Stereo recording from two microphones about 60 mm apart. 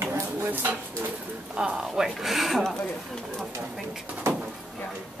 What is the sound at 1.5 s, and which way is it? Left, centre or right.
Speech, centre.